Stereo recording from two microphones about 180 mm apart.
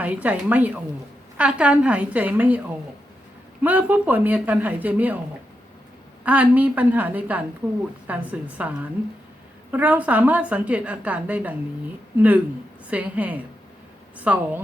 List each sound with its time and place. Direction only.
0.0 s a woman's voice: 10° right (ahead or behind)
3.6 s a woman's voice: 10° right (ahead or behind)
6.2 s a woman's voice: 10° right (ahead or behind)
12.9 s a woman's voice: 10° right (ahead or behind)